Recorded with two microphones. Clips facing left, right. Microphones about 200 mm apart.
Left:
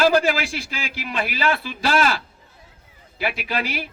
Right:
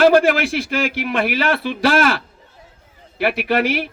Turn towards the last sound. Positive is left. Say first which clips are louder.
# right 8 dB
turn(degrees=-60)  # may be behind; listen again after turning